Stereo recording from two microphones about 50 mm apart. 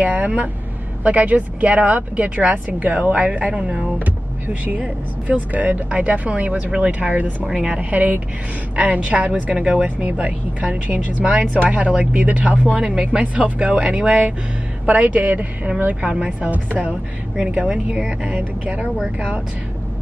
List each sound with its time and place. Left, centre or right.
0.0 s speech: right
7.4 s a woman's voice: centre
7.9 s speech: right
9.6 s a woman's voice: centre
9.8 s speech: right
14.9 s speech: right
16.0 s speech: right
17.6 s speech: centre